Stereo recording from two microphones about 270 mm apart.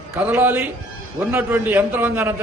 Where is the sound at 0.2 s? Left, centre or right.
Centre.